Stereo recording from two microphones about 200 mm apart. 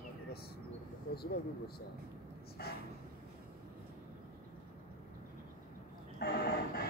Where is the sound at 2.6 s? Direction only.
55° left (ahead or behind).